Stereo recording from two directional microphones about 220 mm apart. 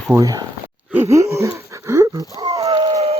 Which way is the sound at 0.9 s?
10° right (ahead or behind).